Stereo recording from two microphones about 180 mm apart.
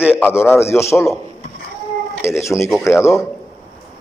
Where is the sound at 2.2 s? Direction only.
15° left (ahead or behind).